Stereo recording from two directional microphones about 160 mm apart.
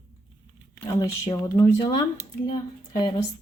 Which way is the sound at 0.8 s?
20° left (ahead or behind).